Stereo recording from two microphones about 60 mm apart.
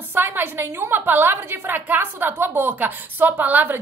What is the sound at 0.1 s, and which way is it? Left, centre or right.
A woman's voice, right.